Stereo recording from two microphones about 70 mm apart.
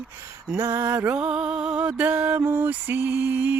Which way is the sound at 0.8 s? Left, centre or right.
Right.